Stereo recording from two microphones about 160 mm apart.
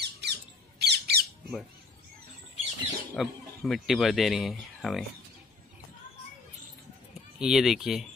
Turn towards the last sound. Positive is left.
turn(degrees=0)  # may be behind; listen again after turning